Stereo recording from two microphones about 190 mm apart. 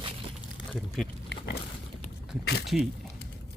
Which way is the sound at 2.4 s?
60° left (ahead or behind).